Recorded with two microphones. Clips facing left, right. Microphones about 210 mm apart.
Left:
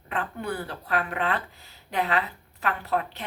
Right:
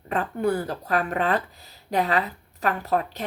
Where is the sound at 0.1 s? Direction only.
40° right (ahead or behind).